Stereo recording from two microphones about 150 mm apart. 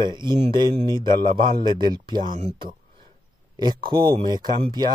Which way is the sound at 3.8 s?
30° right (ahead or behind).